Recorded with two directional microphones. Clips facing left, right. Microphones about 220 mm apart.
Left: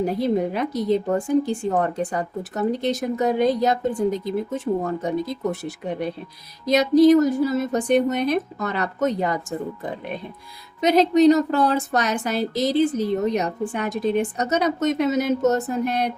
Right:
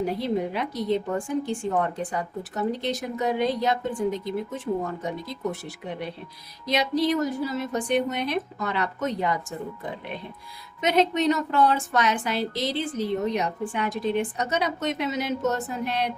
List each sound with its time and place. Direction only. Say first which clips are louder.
0.0 s a woman's voice: left 4 dB; 45° left (ahead or behind)
10.8 s a woman's voice: left 6 dB; 35° left (ahead or behind)